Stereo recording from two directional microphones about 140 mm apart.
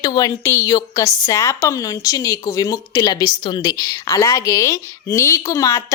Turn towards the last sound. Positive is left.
turn(degrees=20)  # may be behind; listen again after turning